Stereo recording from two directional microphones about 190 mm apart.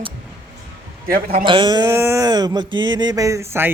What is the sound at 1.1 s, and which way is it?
Speech, 50° right (ahead or behind).